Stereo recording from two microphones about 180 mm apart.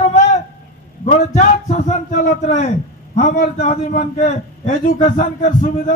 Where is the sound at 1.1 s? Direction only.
40° left (ahead or behind).